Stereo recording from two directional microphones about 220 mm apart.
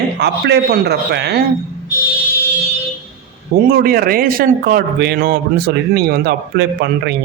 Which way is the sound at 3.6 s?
40° right (ahead or behind).